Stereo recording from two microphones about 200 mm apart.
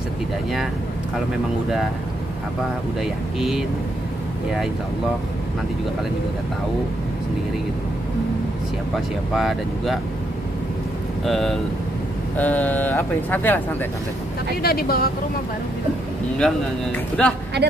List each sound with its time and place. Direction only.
3.0 s speech: centre (ahead or behind)
8.9 s speech: centre (ahead or behind)
11.2 s speech: centre (ahead or behind)
14.6 s speech: 50° left (ahead or behind)
16.3 s speech: 5° left (ahead or behind)
17.6 s a woman's voice: 55° right (ahead or behind)